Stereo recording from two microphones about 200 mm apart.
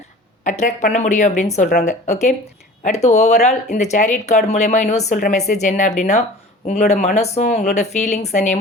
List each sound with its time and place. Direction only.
0.4 s speech: 35° left (ahead or behind)